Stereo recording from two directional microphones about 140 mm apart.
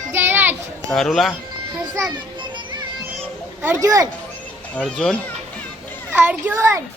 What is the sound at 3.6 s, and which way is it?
Speech, 20° right (ahead or behind).